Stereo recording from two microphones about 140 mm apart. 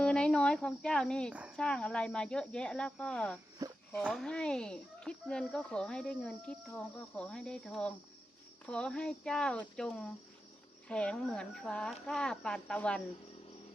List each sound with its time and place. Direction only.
0.0 s cricket: 5° left (ahead or behind)
1.3 s speech: 10° right (ahead or behind)
1.5 s speech: 5° left (ahead or behind)
3.6 s a sound: 25° right (ahead or behind)
4.0 s speech: centre (ahead or behind)